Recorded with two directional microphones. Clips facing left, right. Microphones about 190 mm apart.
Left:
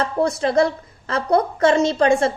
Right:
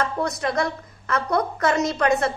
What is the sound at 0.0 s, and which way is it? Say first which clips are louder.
A woman's voice: left 5 dB; 30° left (ahead or behind).